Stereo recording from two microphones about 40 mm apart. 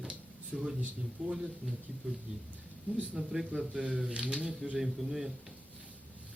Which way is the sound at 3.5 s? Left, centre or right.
Right.